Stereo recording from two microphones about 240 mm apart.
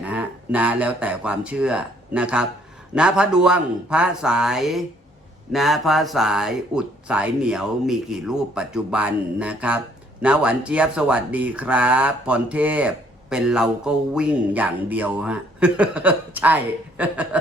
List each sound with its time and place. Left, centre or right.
0.0 s speech: centre